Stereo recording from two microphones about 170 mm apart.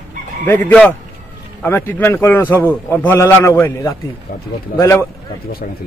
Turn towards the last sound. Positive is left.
turn(degrees=15)  # may be behind; listen again after turning